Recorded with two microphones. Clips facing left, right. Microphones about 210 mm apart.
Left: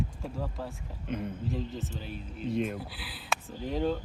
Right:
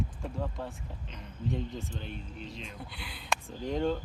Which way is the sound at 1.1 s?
55° left (ahead or behind).